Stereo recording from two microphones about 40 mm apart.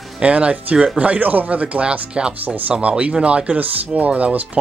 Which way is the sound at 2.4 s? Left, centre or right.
Right.